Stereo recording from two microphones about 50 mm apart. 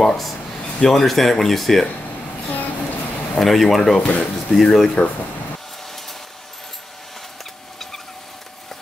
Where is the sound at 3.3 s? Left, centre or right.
Centre.